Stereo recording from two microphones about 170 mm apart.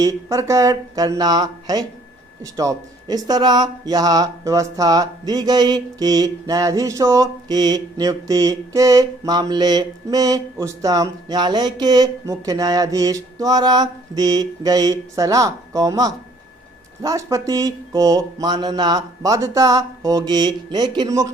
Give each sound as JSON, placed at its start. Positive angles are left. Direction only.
{"t": 0.0, "sound": "speech", "side_deg": -20}